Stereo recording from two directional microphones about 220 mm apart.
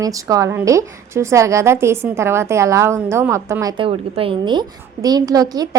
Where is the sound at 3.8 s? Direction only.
25° right (ahead or behind).